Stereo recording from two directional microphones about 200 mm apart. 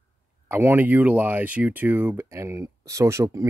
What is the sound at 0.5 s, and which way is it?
Speech, 10° right (ahead or behind).